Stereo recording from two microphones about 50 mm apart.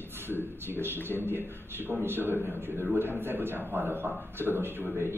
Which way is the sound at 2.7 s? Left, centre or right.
Left.